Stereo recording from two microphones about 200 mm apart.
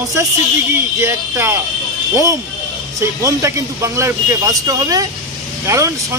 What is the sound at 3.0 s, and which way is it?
Speech, 15° right (ahead or behind).